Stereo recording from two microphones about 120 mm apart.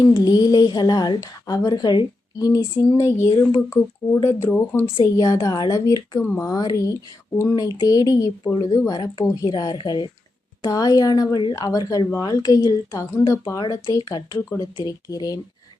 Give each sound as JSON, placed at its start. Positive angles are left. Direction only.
{"t": 0.0, "sound": "a woman's voice", "side_deg": 35}
{"t": 5.1, "sound": "speech", "side_deg": 30}
{"t": 6.2, "sound": "speech", "side_deg": 15}
{"t": 6.5, "sound": "a woman's voice", "side_deg": 30}